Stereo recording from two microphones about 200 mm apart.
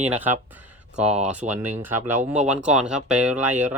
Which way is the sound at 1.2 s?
5° right (ahead or behind).